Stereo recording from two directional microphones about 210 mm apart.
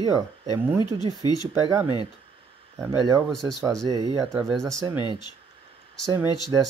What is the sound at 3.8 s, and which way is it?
Speech, 20° right (ahead or behind).